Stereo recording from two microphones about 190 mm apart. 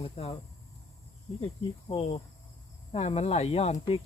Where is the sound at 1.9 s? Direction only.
30° left (ahead or behind).